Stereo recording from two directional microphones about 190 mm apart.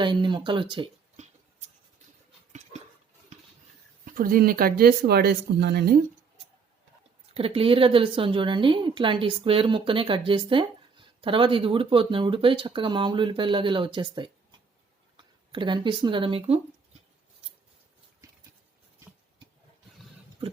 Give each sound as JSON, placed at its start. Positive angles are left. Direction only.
{"t": 0.0, "sound": "a woman's voice", "side_deg": -25}
{"t": 2.5, "sound": "a sound", "side_deg": -35}
{"t": 4.0, "sound": "speech", "side_deg": -50}
{"t": 7.3, "sound": "a woman's voice", "side_deg": -30}